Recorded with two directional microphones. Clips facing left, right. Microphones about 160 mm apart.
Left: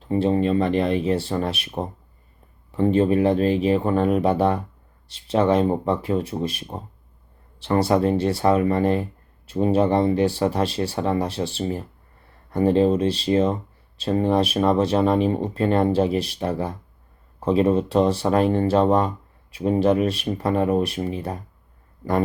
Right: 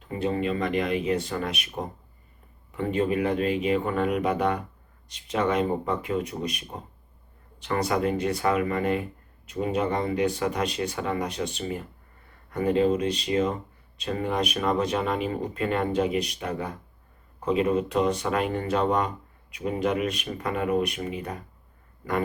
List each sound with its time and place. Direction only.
0.0 s speech: 30° left (ahead or behind)